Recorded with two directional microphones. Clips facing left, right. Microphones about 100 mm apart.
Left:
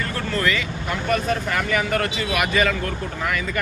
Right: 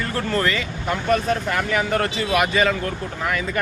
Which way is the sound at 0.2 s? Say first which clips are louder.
Right 1 dB; 35° right (ahead or behind).